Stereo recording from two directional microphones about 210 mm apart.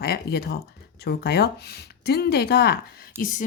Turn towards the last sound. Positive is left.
turn(degrees=40)  # may be behind; listen again after turning